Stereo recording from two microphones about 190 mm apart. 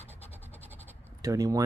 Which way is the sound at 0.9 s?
15° right (ahead or behind).